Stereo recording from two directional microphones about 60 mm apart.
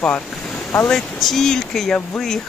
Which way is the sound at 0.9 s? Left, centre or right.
Centre.